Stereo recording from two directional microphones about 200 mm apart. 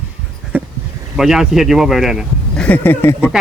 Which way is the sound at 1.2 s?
Centre (ahead or behind).